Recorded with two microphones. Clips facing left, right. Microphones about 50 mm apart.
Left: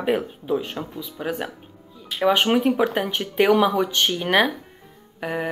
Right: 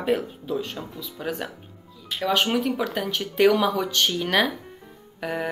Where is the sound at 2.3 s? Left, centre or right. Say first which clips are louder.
Left 4 dB; left.